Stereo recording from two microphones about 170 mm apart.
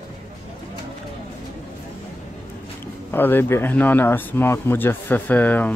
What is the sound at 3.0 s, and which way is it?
Speech, 10° left (ahead or behind).